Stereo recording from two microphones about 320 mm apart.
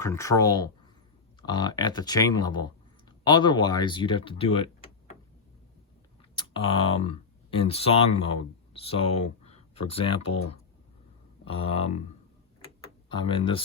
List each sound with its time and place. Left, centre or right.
0.0 s speech: centre
6.3 s speech: centre
11.4 s speech: centre
12.6 s tick-tock: centre